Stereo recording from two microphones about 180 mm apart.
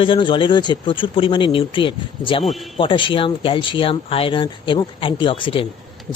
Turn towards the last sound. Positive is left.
turn(degrees=30)  # may be behind; listen again after turning